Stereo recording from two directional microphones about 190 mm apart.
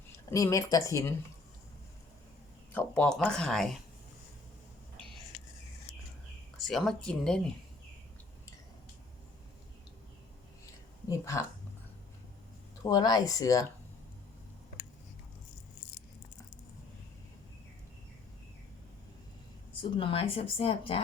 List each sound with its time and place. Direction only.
0.3 s speech: 15° left (ahead or behind)
2.7 s speech: 5° left (ahead or behind)
6.7 s speech: centre (ahead or behind)
12.8 s speech: 20° left (ahead or behind)
19.8 s speech: 25° left (ahead or behind)